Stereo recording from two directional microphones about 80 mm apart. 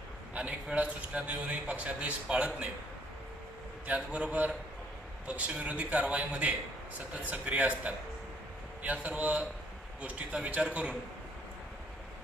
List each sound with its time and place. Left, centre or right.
0.3 s a man's voice: centre
3.8 s a man's voice: centre